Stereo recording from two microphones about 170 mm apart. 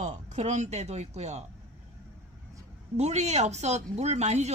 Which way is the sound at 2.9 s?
40° right (ahead or behind).